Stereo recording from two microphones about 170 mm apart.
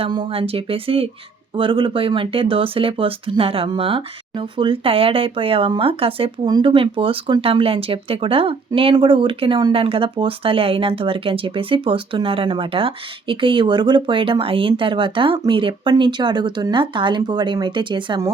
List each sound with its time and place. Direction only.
0.0 s speech: 30° right (ahead or behind)